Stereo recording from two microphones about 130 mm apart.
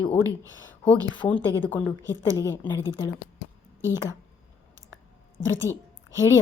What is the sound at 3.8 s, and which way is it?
Speech, 20° right (ahead or behind).